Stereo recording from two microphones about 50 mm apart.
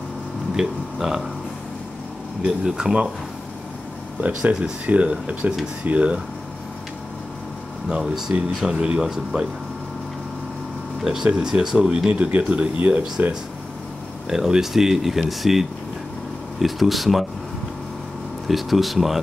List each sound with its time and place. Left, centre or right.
0.6 s speech: centre
2.4 s speech: centre
4.8 s speech: right
8.0 s speech: centre
8.6 s speech: centre
11.2 s speech: centre
12.1 s speech: right
14.3 s speech: centre
18.5 s speech: centre